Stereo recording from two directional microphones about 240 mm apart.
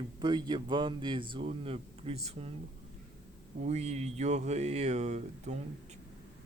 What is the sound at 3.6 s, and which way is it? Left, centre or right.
Speech, right.